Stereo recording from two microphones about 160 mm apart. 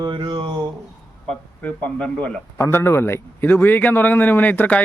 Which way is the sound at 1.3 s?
5° left (ahead or behind).